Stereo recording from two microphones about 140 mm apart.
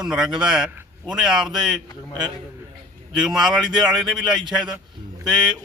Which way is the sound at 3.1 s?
Centre (ahead or behind).